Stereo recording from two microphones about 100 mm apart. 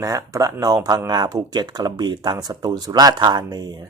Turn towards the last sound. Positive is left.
turn(degrees=-45)  # may be behind; listen again after turning